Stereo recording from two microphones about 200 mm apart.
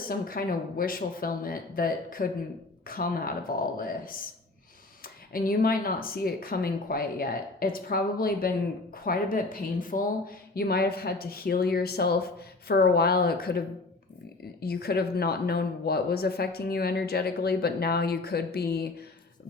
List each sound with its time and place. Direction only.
0.1 s speech: 45° left (ahead or behind)
14.6 s speech: 50° left (ahead or behind)